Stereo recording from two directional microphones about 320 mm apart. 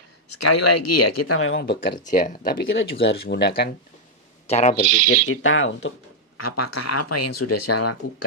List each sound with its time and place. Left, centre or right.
0.3 s speech: left
4.4 s speech: centre
5.0 s speech: left
6.3 s speech: left